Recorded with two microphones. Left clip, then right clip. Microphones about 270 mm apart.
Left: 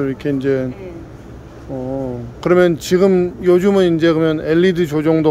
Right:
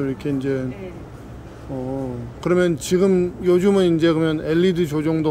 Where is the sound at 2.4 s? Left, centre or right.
Centre.